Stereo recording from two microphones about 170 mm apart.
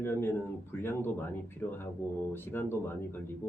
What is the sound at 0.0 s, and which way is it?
Speech, 15° left (ahead or behind).